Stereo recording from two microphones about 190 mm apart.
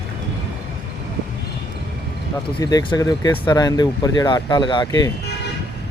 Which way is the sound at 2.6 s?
20° left (ahead or behind).